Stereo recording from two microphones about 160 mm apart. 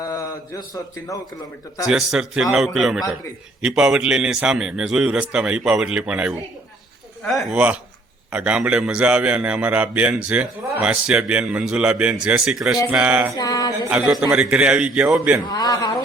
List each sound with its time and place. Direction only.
0.0 s speech: 20° left (ahead or behind)
1.9 s a man's voice: 5° right (ahead or behind)
13.3 s a sound: 25° left (ahead or behind)
13.9 s a man's voice: 5° right (ahead or behind)
15.4 s a man's voice: 25° left (ahead or behind)